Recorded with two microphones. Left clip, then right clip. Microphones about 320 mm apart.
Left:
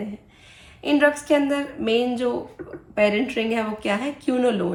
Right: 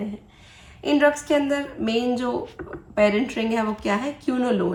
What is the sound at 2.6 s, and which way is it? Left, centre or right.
Speech, right.